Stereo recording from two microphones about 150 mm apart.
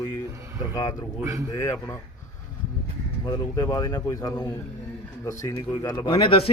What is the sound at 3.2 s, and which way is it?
A man's voice, 25° left (ahead or behind).